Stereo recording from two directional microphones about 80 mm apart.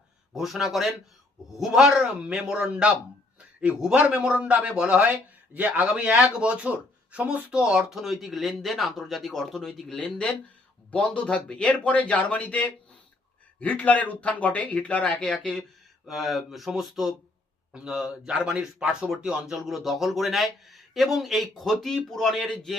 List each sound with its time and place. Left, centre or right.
0.3 s speech: centre